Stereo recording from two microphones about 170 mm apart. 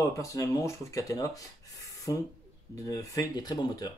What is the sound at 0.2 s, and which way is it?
A man's voice, 20° left (ahead or behind).